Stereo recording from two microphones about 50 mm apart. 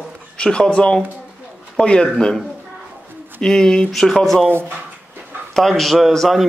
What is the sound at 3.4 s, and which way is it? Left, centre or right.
Speech, centre.